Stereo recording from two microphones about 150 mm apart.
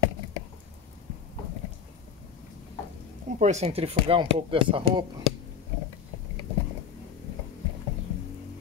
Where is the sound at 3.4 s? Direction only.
50° right (ahead or behind).